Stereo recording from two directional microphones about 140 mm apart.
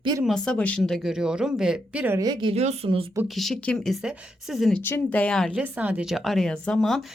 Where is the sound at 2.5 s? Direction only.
50° right (ahead or behind).